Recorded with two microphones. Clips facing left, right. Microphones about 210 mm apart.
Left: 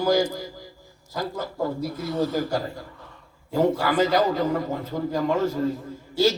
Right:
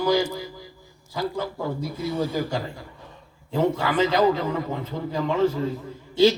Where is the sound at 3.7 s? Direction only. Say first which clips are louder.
Left 1 dB; 45° left (ahead or behind).